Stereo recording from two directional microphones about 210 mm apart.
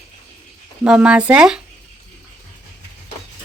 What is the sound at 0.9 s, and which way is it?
Speech, 5° right (ahead or behind).